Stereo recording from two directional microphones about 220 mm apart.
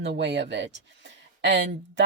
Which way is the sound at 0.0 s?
50° right (ahead or behind).